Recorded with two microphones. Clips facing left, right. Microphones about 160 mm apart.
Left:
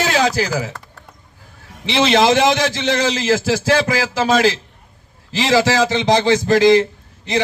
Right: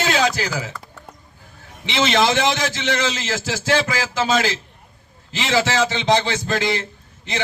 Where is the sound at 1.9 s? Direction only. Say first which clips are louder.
Left 4 dB; 35° left (ahead or behind).